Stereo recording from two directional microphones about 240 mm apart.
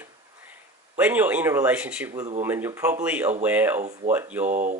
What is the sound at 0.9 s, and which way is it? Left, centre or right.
Speech, centre.